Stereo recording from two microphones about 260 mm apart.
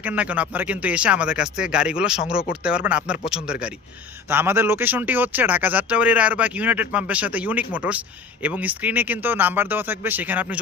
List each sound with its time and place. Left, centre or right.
0.0 s speech: centre